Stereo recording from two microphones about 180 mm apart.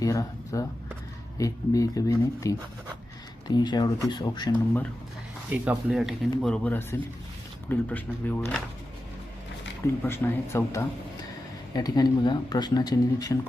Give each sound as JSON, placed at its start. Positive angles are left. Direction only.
{"t": 0.0, "sound": "speech", "side_deg": 20}
{"t": 5.5, "sound": "speech", "side_deg": -5}
{"t": 9.8, "sound": "speech", "side_deg": 10}